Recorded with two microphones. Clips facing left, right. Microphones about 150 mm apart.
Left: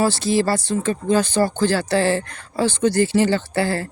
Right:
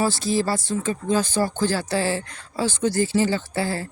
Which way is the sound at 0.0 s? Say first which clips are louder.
Left 4 dB; 70° left (ahead or behind).